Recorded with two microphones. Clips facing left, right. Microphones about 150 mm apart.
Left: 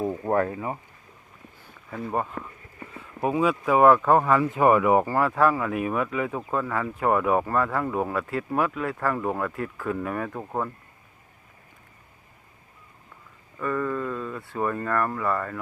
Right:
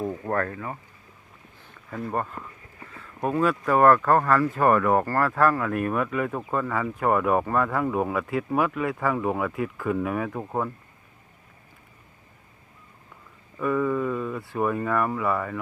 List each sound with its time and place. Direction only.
0.0 s speech: 15° left (ahead or behind)
1.7 s speech: centre (ahead or behind)
13.6 s speech: 5° right (ahead or behind)